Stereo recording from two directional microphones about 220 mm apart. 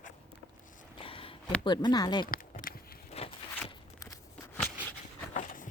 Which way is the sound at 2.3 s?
40° left (ahead or behind).